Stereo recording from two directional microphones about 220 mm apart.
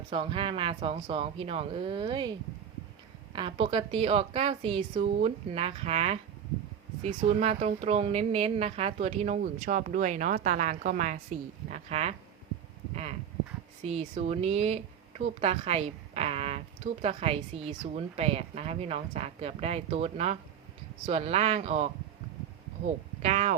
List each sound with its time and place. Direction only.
0.1 s a woman's voice: 25° right (ahead or behind)
3.3 s a woman's voice: 25° right (ahead or behind)
23.2 s speech: 30° right (ahead or behind)